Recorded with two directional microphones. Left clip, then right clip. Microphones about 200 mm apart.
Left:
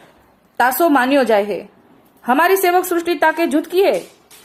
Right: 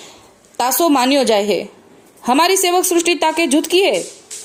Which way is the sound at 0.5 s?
25° right (ahead or behind).